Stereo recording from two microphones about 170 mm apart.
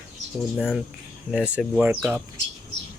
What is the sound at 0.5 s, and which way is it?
Speech, 5° right (ahead or behind).